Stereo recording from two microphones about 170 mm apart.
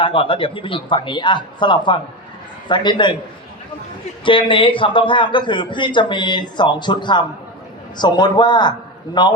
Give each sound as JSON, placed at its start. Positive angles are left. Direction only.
{"t": 0.0, "sound": "a man's voice", "side_deg": 30}
{"t": 4.3, "sound": "a man's voice", "side_deg": 30}